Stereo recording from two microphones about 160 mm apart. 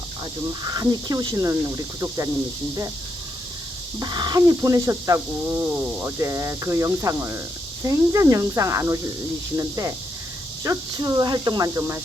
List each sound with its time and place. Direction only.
0.6 s speech: 25° right (ahead or behind)
4.0 s speech: 25° right (ahead or behind)